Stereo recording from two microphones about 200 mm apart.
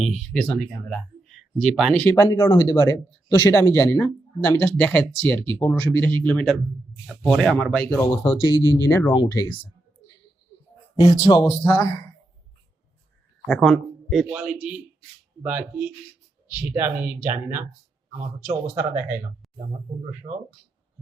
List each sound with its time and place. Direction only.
0.2 s speech: centre (ahead or behind); by 9.6 s 20° left (ahead or behind)
11.2 s speech: 20° left (ahead or behind)
13.5 s a man's voice: centre (ahead or behind)
18.8 s speech: 10° right (ahead or behind)
20.2 s speech: 30° right (ahead or behind)